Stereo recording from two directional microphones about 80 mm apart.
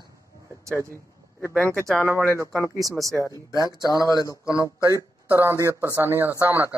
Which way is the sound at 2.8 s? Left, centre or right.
Right.